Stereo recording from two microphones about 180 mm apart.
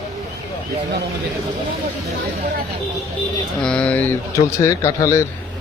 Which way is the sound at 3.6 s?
5° left (ahead or behind).